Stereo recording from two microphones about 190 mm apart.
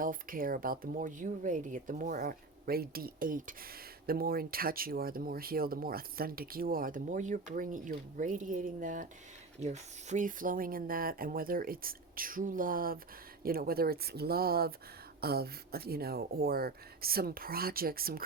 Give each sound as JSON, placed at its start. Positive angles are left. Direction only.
{"t": 0.0, "sound": "speech", "side_deg": -45}